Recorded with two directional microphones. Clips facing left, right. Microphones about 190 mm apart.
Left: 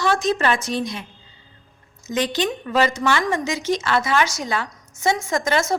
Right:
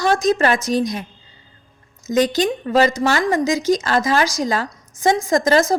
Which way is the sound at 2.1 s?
40° right (ahead or behind).